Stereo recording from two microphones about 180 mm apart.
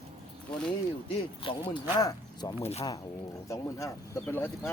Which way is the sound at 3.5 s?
15° left (ahead or behind).